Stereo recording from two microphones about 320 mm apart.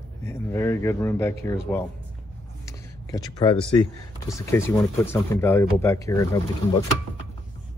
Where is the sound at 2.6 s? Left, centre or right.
Centre.